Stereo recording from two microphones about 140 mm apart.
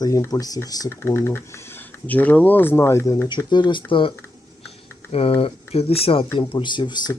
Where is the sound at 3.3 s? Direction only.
35° left (ahead or behind).